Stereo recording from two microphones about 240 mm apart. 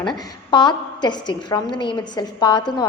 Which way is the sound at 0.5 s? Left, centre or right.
Centre.